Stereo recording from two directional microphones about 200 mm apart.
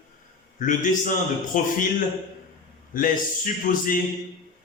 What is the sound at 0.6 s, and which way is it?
Speech, 40° left (ahead or behind).